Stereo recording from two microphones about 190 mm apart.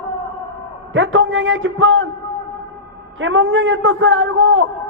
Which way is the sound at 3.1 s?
90° right.